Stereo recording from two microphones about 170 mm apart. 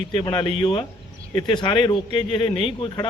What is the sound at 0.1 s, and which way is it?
Speech, 30° left (ahead or behind).